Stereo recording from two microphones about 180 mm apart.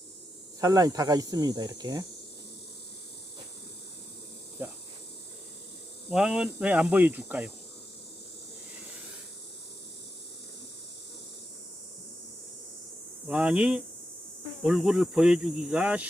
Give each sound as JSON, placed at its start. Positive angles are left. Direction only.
{"t": 0.6, "sound": "speech", "side_deg": -20}
{"t": 6.1, "sound": "speech", "side_deg": -5}
{"t": 13.2, "sound": "speech", "side_deg": -5}